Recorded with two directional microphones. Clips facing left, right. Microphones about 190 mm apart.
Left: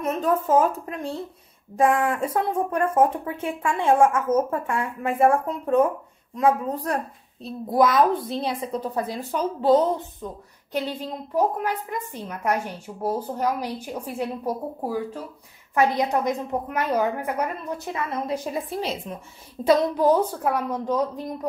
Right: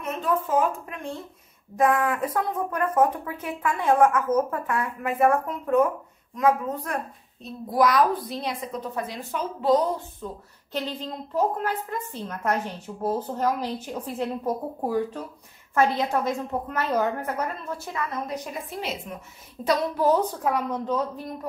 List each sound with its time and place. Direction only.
0.0 s a woman's voice: 40° left (ahead or behind); by 19.9 s 25° left (ahead or behind)
20.0 s a woman's voice: 10° left (ahead or behind)